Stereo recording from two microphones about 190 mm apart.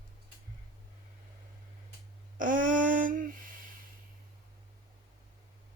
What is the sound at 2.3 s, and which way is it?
Speech, 45° right (ahead or behind).